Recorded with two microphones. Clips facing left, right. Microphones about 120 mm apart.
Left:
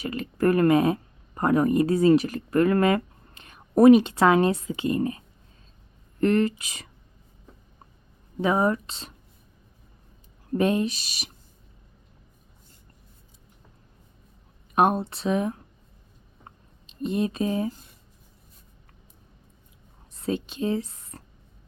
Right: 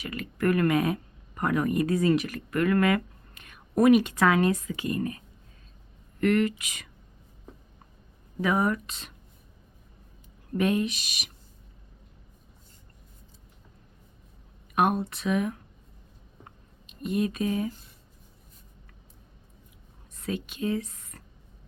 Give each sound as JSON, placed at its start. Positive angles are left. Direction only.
{"t": 0.0, "sound": "speech", "side_deg": 30}
{"t": 8.4, "sound": "speech", "side_deg": 25}
{"t": 10.5, "sound": "speech", "side_deg": 30}
{"t": 14.8, "sound": "speech", "side_deg": 30}
{"t": 16.4, "sound": "a sound", "side_deg": 30}
{"t": 20.2, "sound": "speech", "side_deg": 30}